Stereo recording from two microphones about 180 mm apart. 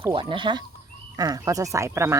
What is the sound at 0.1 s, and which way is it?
Speech, 30° right (ahead or behind).